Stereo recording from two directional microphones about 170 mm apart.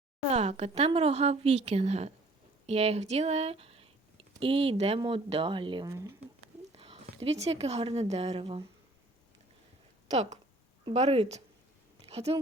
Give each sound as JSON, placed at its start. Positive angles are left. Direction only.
{"t": 0.3, "sound": "a woman's voice", "side_deg": -40}
{"t": 6.7, "sound": "a sound", "side_deg": -35}
{"t": 7.6, "sound": "a woman's voice", "side_deg": -35}
{"t": 10.1, "sound": "a woman's voice", "side_deg": -45}